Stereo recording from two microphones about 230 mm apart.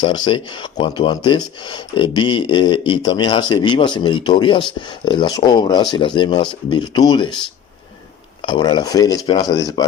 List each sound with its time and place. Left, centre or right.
0.3 s speech: centre
8.4 s speech: centre